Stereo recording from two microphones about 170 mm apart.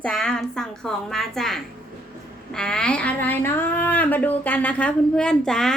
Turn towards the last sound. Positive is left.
turn(degrees=5)  # may be behind; listen again after turning